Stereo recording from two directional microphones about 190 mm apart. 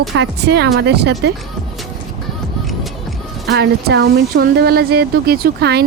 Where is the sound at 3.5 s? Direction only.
65° right (ahead or behind).